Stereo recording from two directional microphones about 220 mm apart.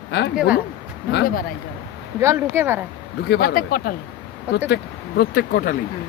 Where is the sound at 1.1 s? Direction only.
45° left (ahead or behind).